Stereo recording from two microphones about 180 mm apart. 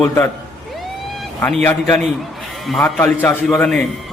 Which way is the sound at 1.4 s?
5° left (ahead or behind).